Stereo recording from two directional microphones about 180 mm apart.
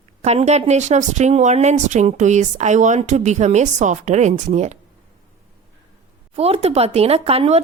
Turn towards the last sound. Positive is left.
turn(degrees=-35)  # may be behind; listen again after turning